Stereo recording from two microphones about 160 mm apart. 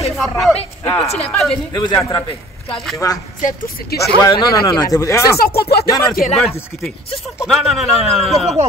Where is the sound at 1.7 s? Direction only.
20° left (ahead or behind).